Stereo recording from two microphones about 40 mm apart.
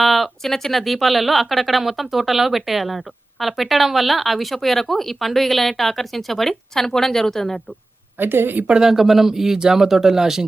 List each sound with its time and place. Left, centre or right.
0.0 s a sound: centre
0.5 s speech: centre
8.2 s a woman's voice: right
8.8 s speech: centre